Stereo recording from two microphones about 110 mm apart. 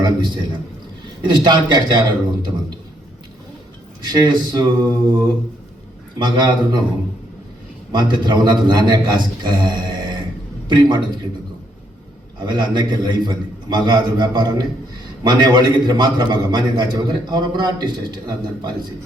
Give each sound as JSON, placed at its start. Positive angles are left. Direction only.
{"t": 0.0, "sound": "a man's voice", "side_deg": -45}
{"t": 4.0, "sound": "a man's voice", "side_deg": -40}
{"t": 7.9, "sound": "a man's voice", "side_deg": -45}
{"t": 12.4, "sound": "a man's voice", "side_deg": -45}